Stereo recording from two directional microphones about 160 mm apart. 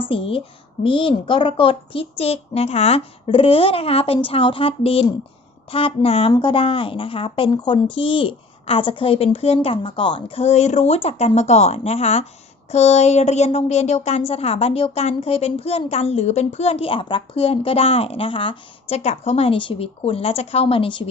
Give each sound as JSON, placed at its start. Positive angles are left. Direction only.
{"t": 0.1, "sound": "a woman's voice", "side_deg": 35}